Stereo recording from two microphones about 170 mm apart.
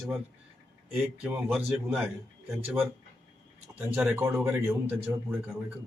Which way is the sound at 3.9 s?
15° right (ahead or behind).